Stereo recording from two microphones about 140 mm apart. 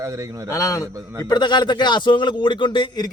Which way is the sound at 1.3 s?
35° left (ahead or behind).